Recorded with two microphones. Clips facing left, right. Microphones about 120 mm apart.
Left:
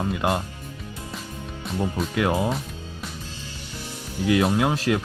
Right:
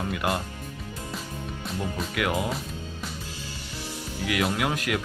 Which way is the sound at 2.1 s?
30° left (ahead or behind).